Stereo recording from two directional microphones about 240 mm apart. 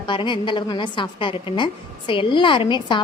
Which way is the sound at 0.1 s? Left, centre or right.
Centre.